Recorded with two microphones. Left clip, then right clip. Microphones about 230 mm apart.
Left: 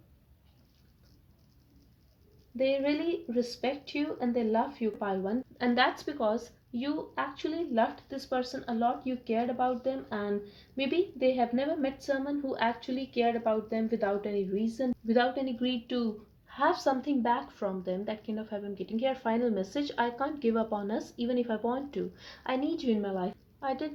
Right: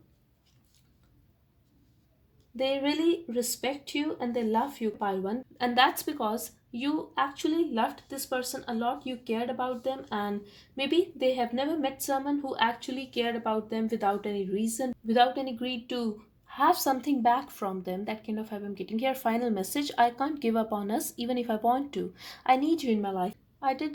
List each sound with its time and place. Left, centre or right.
3.3 s speech: right